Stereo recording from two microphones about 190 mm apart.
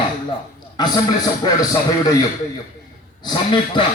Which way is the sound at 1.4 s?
20° left (ahead or behind).